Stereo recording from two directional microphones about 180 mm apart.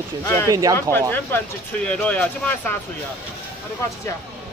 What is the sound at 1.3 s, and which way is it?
Speech, 10° left (ahead or behind).